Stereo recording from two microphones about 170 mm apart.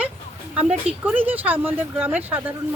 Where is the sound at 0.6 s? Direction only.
5° right (ahead or behind).